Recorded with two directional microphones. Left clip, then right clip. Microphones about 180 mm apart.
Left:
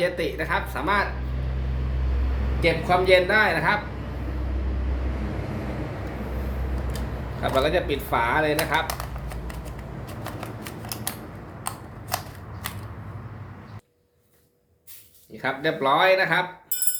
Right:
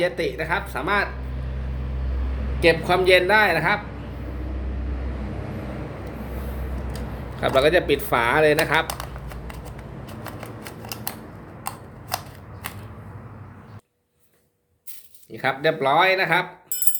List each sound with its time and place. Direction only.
0.0 s speech: 25° right (ahead or behind)
2.6 s speech: 45° right (ahead or behind)
7.4 s speech: 50° right (ahead or behind)
10.2 s scissors: 10° right (ahead or behind)
11.6 s a sound: 5° right (ahead or behind)
15.3 s speech: 45° right (ahead or behind)